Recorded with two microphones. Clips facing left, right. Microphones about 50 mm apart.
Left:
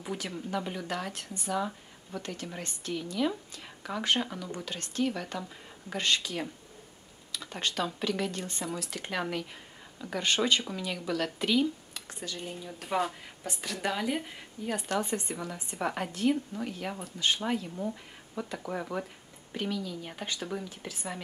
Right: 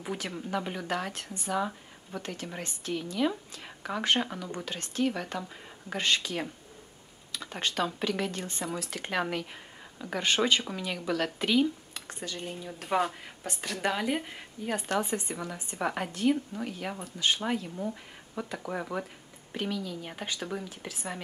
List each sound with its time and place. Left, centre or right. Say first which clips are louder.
0.0 s a woman's voice: right 1 dB; centre